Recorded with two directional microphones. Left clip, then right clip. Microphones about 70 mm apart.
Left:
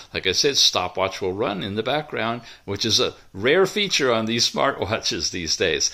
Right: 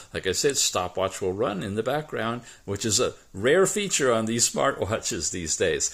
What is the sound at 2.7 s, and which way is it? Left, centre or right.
Speech, right.